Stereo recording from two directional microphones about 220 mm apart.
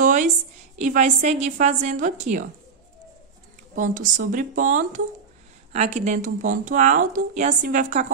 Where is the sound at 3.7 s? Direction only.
35° right (ahead or behind).